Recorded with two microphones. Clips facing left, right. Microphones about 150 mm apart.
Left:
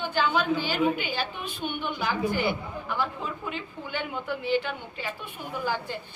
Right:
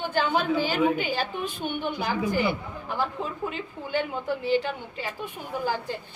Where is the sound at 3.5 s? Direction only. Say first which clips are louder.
Right 5 dB; 35° right (ahead or behind).